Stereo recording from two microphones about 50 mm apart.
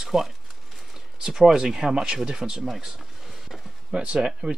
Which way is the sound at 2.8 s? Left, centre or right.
Centre.